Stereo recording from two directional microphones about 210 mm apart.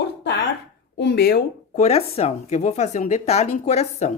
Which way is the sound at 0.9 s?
50° left (ahead or behind).